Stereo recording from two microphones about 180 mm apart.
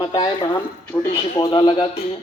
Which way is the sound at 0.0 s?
25° left (ahead or behind).